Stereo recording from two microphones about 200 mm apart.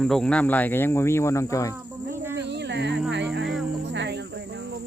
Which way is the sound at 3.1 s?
60° right (ahead or behind).